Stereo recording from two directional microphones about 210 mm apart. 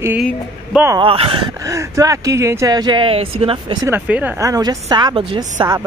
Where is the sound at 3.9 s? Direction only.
10° right (ahead or behind).